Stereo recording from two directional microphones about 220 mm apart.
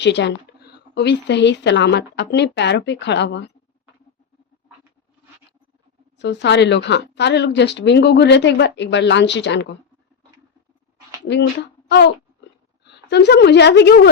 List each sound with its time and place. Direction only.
0.0 s speech: 50° left (ahead or behind)
6.1 s speech: 50° left (ahead or behind)
11.3 s a woman's voice: 50° left (ahead or behind)